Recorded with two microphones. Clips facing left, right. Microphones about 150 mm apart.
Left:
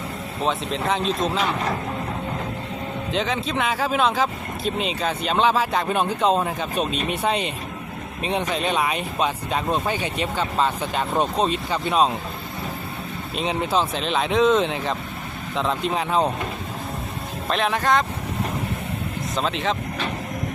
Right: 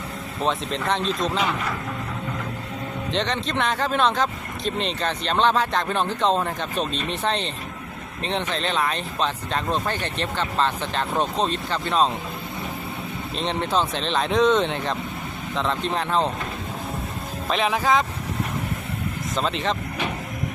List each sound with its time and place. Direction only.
0.9 s speech: centre (ahead or behind)
3.1 s speech: 5° left (ahead or behind)
13.3 s speech: 5° left (ahead or behind)
17.5 s speech: centre (ahead or behind)
19.4 s speech: centre (ahead or behind)